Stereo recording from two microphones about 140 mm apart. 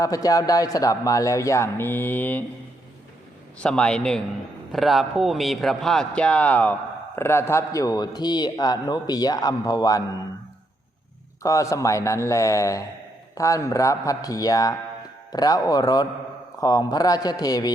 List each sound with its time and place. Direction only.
0.0 s a man's voice: 25° left (ahead or behind)
3.6 s a man's voice: 5° left (ahead or behind); by 10.0 s 25° left (ahead or behind)
11.4 s a man's voice: 25° left (ahead or behind)